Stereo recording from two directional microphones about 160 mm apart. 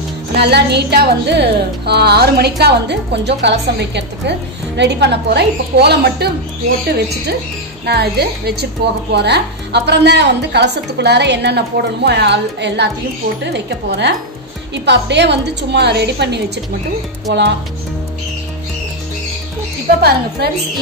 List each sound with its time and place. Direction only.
0.4 s speech: 90° right
7.8 s speech: 90° right
20.0 s a woman's voice: 85° right